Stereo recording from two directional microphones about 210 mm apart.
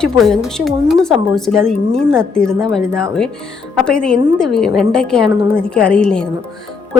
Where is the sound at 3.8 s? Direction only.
5° left (ahead or behind).